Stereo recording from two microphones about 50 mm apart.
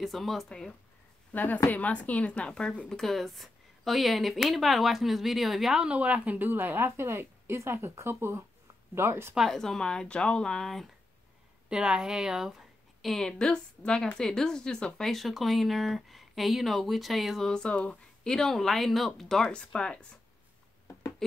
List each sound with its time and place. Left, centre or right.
0.0 s a woman's voice: centre
1.3 s speech: left
2.9 s speech: centre
5.9 s a woman's voice: right
9.5 s a woman's voice: centre
11.7 s a woman's voice: centre
13.1 s a woman's voice: centre
15.0 s speech: centre
17.4 s a woman's voice: centre
19.4 s a woman's voice: centre